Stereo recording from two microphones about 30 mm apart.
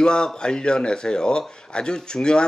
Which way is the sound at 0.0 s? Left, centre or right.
Left.